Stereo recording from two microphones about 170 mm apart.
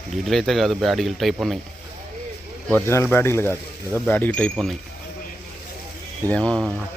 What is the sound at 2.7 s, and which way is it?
Speech, 15° left (ahead or behind).